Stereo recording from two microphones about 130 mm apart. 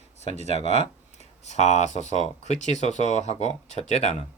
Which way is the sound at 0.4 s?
55° left (ahead or behind).